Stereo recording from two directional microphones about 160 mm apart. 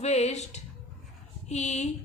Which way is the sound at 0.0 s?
45° left (ahead or behind).